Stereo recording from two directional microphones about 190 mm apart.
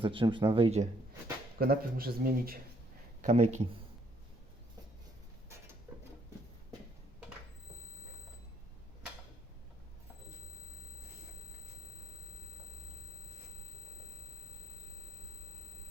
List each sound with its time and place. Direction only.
0.0 s speech: 25° right (ahead or behind)
1.5 s speech: 50° right (ahead or behind)
3.2 s speech: 40° right (ahead or behind)